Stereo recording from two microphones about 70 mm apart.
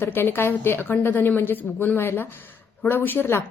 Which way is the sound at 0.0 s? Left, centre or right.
Left.